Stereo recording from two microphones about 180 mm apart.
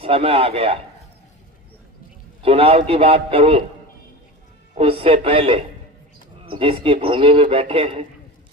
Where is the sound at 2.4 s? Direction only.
35° right (ahead or behind).